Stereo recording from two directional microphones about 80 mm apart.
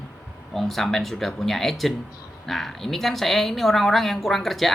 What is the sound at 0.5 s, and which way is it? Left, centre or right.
A woman's voice, centre.